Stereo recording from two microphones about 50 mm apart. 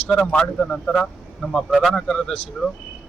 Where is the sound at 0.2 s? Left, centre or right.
Centre.